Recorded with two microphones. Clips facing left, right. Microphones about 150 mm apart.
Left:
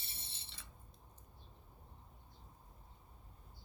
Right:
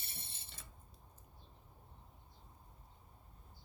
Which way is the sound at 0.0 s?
55° right (ahead or behind).